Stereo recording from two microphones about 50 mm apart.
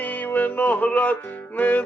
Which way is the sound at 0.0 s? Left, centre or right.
Left.